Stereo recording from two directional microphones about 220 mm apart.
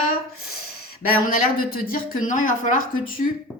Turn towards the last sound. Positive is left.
turn(degrees=40)  # may be behind; listen again after turning